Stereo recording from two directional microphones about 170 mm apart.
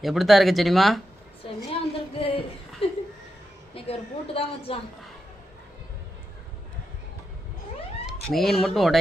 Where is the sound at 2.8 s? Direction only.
35° left (ahead or behind).